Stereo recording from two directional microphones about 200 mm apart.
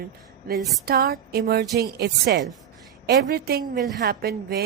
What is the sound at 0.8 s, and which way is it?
Speech, 50° right (ahead or behind).